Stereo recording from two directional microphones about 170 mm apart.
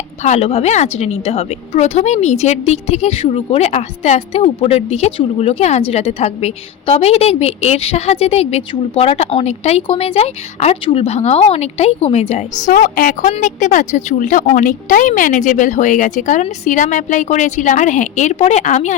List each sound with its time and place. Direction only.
0.2 s a woman's voice: 40° left (ahead or behind)